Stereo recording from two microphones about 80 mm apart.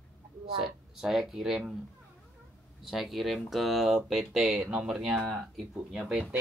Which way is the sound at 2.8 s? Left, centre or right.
Centre.